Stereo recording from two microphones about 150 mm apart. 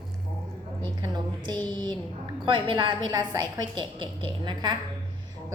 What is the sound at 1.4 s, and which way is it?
A woman's voice, 30° right (ahead or behind).